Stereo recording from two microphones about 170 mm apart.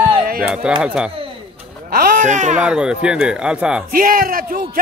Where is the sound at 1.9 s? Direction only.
55° right (ahead or behind).